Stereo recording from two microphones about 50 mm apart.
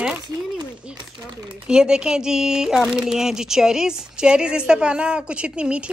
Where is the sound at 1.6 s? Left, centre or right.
Centre.